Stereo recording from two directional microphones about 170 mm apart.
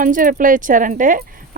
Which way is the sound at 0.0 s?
50° right (ahead or behind).